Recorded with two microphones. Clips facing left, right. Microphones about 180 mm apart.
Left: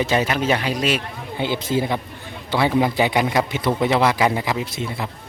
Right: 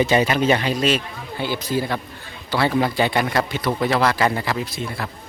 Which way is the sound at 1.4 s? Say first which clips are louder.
Left 2 dB; 20° left (ahead or behind).